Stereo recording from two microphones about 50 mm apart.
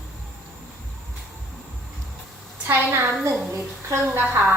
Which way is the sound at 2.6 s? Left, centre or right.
Right.